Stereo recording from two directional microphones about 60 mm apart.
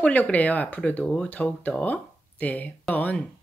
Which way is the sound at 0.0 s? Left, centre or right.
Left.